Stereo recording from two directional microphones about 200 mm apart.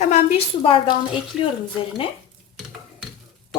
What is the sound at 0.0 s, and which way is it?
Speech, 35° left (ahead or behind).